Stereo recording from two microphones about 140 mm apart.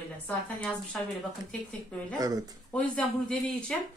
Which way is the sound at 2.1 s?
25° right (ahead or behind).